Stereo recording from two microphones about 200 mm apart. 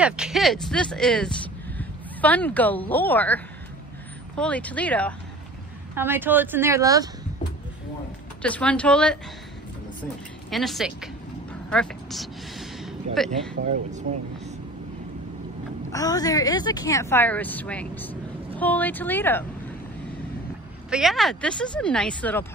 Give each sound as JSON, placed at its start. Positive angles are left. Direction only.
{"t": 0.0, "sound": "speech", "side_deg": -5}
{"t": 5.9, "sound": "speech", "side_deg": -10}
{"t": 8.4, "sound": "speech", "side_deg": 5}
{"t": 10.5, "sound": "speech", "side_deg": 0}
{"t": 13.7, "sound": "speech", "side_deg": -35}
{"t": 15.9, "sound": "speech", "side_deg": 20}
{"t": 20.9, "sound": "speech", "side_deg": 0}